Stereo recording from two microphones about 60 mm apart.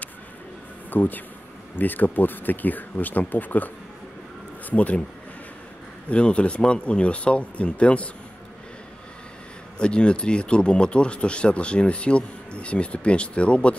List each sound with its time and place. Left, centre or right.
0.8 s speech: left
6.0 s speech: centre
9.8 s speech: centre